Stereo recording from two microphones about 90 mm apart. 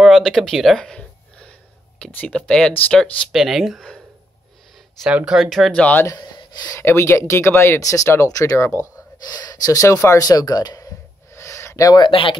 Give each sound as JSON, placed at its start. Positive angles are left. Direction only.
{"t": 0.0, "sound": "a sound", "side_deg": 0}
{"t": 2.1, "sound": "speech", "side_deg": 10}
{"t": 3.3, "sound": "speech", "side_deg": 0}
{"t": 5.1, "sound": "speech", "side_deg": -5}
{"t": 5.7, "sound": "speech", "side_deg": 15}
{"t": 6.0, "sound": "speech", "side_deg": 50}
{"t": 6.7, "sound": "speech", "side_deg": 30}
{"t": 9.3, "sound": "speech", "side_deg": 40}
{"t": 10.0, "sound": "a sound", "side_deg": 40}
{"t": 12.1, "sound": "speech", "side_deg": 80}